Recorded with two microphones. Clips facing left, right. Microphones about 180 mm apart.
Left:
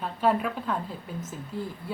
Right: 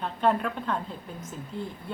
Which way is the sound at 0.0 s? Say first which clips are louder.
Even; 5° left (ahead or behind).